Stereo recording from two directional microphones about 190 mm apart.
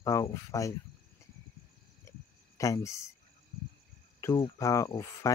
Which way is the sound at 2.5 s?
15° left (ahead or behind).